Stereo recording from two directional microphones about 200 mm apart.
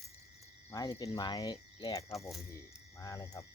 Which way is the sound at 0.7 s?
20° left (ahead or behind).